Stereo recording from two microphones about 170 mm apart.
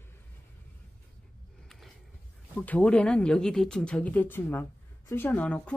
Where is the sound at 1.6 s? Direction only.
Centre (ahead or behind).